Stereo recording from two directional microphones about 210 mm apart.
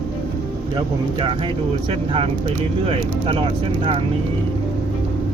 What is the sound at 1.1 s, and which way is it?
Speech, 25° right (ahead or behind).